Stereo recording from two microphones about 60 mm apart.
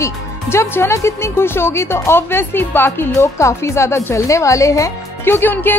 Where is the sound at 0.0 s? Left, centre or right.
Left.